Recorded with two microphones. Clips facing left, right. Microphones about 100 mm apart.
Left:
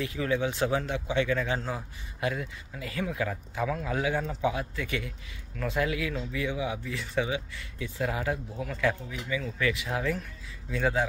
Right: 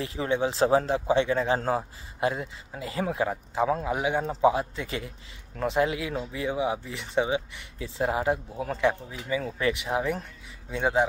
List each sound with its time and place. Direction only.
0.0 s speech: 30° right (ahead or behind)
1.6 s a man's voice: 45° right (ahead or behind)
2.1 s speech: 25° right (ahead or behind)